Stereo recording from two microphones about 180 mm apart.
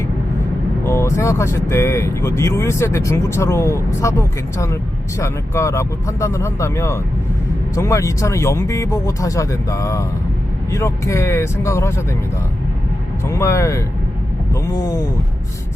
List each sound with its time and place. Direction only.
0.9 s speech: 15° left (ahead or behind)
13.2 s speech: 15° left (ahead or behind)